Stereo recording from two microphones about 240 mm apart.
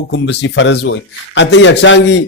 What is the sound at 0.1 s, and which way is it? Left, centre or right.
A man's voice, left.